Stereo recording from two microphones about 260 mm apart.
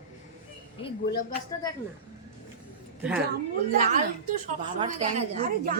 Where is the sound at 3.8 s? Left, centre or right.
Right.